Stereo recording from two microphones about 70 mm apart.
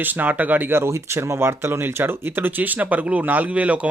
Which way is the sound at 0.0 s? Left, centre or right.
Right.